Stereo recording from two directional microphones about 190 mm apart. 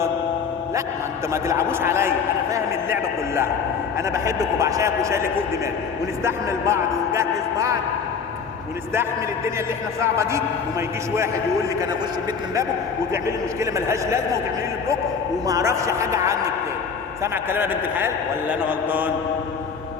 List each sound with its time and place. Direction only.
1.3 s a man's voice: 15° right (ahead or behind)
10.0 s a man's voice: 15° right (ahead or behind)
13.6 s a man's voice: 15° right (ahead or behind)
15.4 s a man's voice: 15° right (ahead or behind)